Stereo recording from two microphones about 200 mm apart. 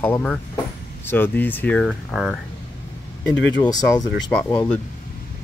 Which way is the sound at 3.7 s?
20° left (ahead or behind).